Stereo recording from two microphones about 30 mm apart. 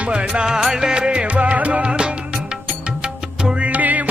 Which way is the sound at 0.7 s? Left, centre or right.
Right.